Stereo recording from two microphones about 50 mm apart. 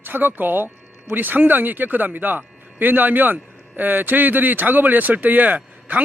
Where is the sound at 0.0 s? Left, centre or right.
Right.